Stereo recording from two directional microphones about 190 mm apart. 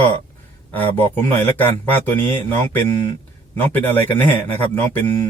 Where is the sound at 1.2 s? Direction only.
10° left (ahead or behind).